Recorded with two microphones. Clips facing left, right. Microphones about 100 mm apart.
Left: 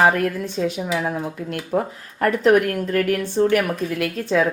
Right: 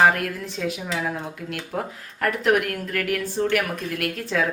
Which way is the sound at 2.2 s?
35° left (ahead or behind).